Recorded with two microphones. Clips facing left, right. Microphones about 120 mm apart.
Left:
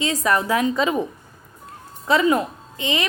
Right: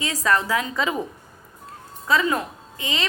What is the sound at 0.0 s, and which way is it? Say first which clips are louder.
A woman's voice: left 2 dB; 20° left (ahead or behind).